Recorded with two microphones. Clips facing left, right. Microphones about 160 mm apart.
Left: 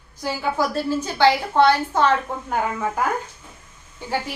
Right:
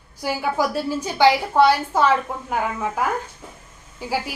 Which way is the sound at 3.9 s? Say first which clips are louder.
Right 1 dB; 5° right (ahead or behind).